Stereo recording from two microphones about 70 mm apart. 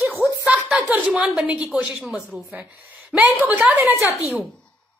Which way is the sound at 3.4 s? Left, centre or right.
Right.